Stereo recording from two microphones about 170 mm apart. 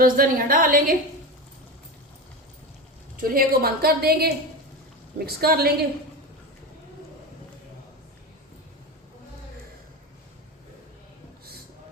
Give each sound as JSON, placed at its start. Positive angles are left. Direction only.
{"t": 0.0, "sound": "a woman's voice", "side_deg": -55}
{"t": 3.2, "sound": "a woman's voice", "side_deg": -60}